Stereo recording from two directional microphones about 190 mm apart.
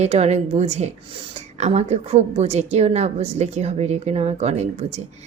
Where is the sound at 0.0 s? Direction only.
35° right (ahead or behind).